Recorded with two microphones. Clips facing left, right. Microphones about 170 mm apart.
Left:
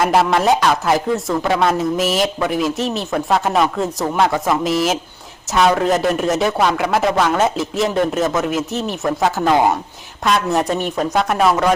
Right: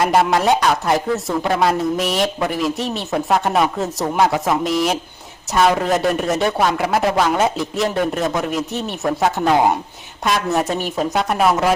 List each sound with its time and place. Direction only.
0.0 s speech: centre (ahead or behind)